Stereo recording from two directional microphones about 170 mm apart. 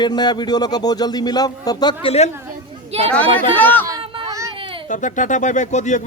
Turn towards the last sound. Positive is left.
turn(degrees=45)  # may be behind; listen again after turning